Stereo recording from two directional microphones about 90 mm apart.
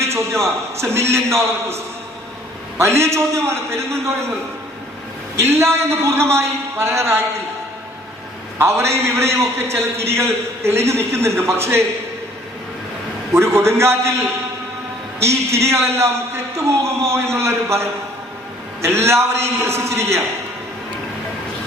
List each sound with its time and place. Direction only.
0.0 s a man's voice: 30° right (ahead or behind)
2.7 s a man's voice: 30° right (ahead or behind)
5.4 s a man's voice: 30° right (ahead or behind)
8.5 s a man's voice: 30° right (ahead or behind)
13.3 s a man's voice: 30° right (ahead or behind)